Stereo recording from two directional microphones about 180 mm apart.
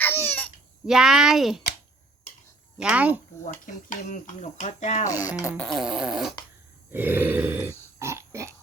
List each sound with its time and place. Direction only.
0.0 s baby cry: 10° left (ahead or behind)
0.9 s speech: 5° right (ahead or behind)
2.8 s speech: 5° right (ahead or behind)
3.4 s mechanisms: 45° left (ahead or behind)
5.4 s a sound: 15° left (ahead or behind)
5.6 s speech: centre (ahead or behind)
6.9 s grunt: 10° right (ahead or behind)